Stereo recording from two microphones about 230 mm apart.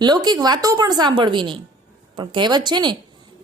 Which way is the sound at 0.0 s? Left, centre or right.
Centre.